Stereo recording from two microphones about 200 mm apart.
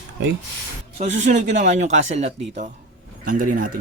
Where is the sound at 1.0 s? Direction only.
35° right (ahead or behind).